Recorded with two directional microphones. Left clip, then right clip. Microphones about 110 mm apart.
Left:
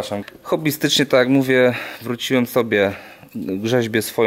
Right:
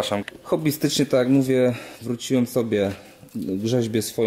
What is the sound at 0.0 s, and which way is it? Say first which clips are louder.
Speech: right 1 dB; 5° left (ahead or behind).